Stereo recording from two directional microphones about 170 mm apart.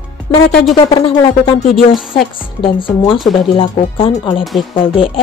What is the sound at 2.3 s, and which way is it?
Speech, 30° left (ahead or behind).